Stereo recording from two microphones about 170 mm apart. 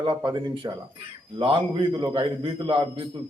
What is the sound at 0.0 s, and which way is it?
A man's voice, 25° right (ahead or behind).